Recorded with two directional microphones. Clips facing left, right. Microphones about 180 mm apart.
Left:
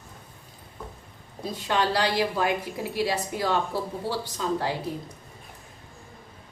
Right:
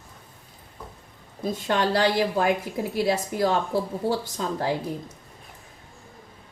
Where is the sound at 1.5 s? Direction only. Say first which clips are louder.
Right 2 dB; 50° right (ahead or behind).